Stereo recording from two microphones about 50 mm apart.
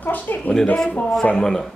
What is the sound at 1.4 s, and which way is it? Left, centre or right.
Speech, centre.